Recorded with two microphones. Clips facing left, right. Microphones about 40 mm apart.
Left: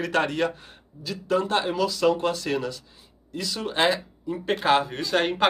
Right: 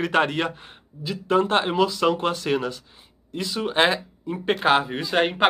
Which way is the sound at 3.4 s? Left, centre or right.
Centre.